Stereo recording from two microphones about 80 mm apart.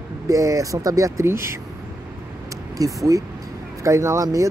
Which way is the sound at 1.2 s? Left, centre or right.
Right.